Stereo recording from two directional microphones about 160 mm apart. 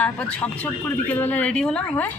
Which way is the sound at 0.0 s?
10° left (ahead or behind).